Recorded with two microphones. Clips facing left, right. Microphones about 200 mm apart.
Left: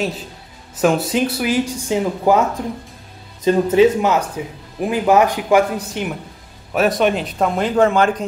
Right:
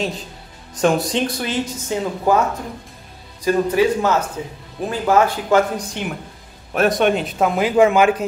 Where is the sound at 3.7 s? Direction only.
20° left (ahead or behind).